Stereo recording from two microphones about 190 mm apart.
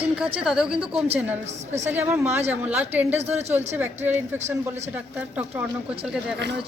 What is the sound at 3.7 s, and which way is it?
A woman's voice, 10° right (ahead or behind).